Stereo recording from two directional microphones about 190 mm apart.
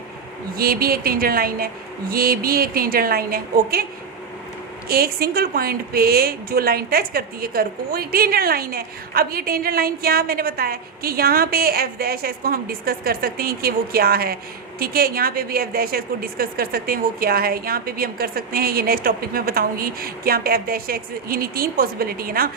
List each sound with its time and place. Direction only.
0.5 s a woman's voice: 50° right (ahead or behind)
4.9 s a woman's voice: 50° right (ahead or behind)